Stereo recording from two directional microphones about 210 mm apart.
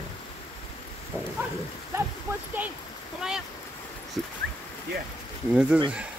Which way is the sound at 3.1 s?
5° right (ahead or behind).